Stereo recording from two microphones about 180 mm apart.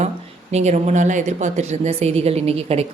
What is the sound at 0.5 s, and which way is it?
A woman's voice, 40° right (ahead or behind).